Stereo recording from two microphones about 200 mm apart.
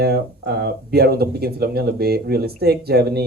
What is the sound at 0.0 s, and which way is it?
Speech, 55° right (ahead or behind).